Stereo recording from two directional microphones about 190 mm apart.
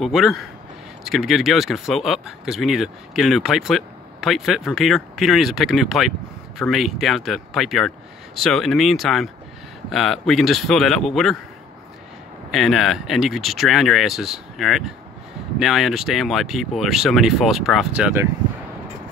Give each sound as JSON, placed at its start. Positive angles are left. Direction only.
{"t": 0.0, "sound": "speech", "side_deg": 0}
{"t": 12.4, "sound": "speech", "side_deg": 0}